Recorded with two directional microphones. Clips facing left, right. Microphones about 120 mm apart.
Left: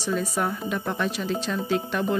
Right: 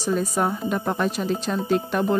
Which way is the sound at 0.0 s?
40° right (ahead or behind).